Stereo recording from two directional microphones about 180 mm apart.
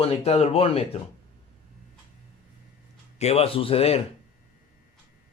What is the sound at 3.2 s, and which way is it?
Speech, 35° left (ahead or behind).